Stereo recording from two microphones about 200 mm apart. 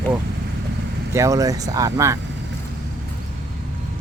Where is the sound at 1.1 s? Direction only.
15° right (ahead or behind).